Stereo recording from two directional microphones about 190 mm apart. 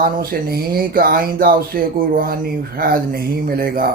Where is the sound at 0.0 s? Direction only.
50° right (ahead or behind).